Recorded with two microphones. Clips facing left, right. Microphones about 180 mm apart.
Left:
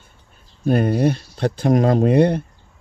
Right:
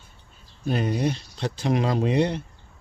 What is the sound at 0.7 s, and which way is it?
Speech, 55° left (ahead or behind).